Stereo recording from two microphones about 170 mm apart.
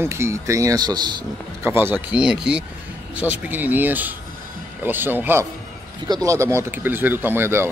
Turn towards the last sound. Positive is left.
turn(degrees=-15)  # may be behind; listen again after turning